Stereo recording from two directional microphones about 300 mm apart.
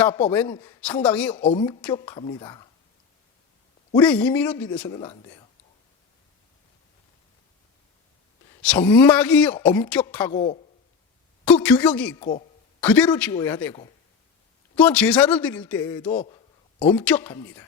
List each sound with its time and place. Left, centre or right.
0.0 s a man's voice: centre
1.4 s a man's voice: centre
3.9 s a man's voice: centre
8.6 s a man's voice: centre
11.4 s a man's voice: centre